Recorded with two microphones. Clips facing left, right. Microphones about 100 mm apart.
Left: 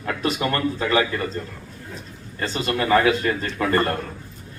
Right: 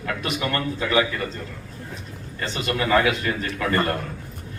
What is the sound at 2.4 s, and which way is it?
Speech, 30° left (ahead or behind).